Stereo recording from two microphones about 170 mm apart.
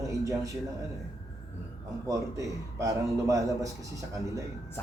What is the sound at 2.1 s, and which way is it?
A man's voice, 20° right (ahead or behind).